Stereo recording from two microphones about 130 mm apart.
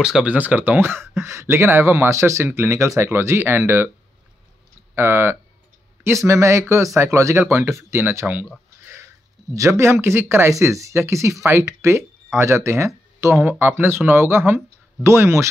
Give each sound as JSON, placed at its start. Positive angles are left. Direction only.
{"t": 0.0, "sound": "speech", "side_deg": -5}
{"t": 4.9, "sound": "speech", "side_deg": -20}